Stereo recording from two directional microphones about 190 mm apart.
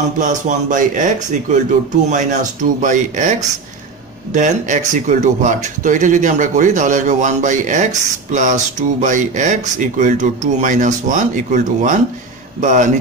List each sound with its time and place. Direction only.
0.2 s speech: 40° right (ahead or behind)